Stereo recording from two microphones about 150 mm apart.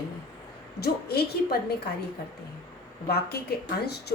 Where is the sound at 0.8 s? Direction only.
90° left.